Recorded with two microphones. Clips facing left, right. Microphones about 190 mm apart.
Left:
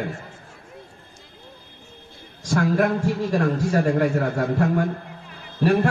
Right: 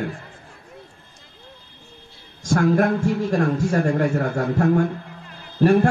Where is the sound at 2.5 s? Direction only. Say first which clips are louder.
Right 2 dB; 50° right (ahead or behind).